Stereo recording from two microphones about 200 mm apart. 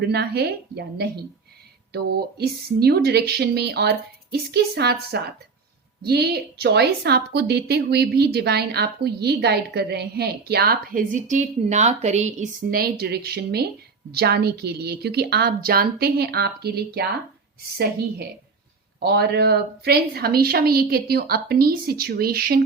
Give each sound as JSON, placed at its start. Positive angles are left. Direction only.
{"t": 0.0, "sound": "a woman's voice", "side_deg": -55}
{"t": 2.4, "sound": "a woman's voice", "side_deg": -55}
{"t": 19.0, "sound": "a woman's voice", "side_deg": -55}